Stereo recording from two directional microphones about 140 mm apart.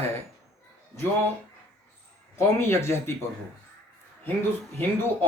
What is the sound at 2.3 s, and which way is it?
Speech, 15° left (ahead or behind).